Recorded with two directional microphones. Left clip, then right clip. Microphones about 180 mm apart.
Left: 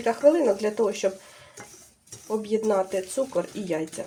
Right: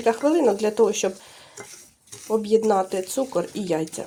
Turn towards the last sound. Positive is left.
turn(degrees=-40)  # may be behind; listen again after turning